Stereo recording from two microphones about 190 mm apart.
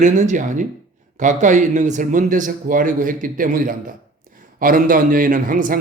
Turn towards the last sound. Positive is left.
turn(degrees=-45)  # may be behind; listen again after turning